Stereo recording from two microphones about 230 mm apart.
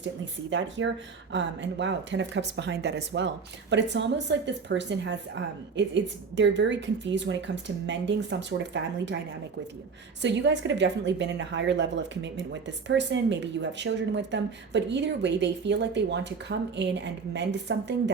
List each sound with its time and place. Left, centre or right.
0.5 s speech: right
10.2 s speech: right